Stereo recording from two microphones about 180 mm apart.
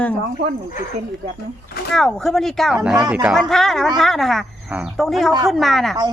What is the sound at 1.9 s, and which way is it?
Speech, 5° left (ahead or behind).